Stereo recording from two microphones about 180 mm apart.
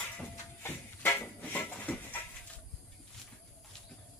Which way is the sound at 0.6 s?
15° left (ahead or behind).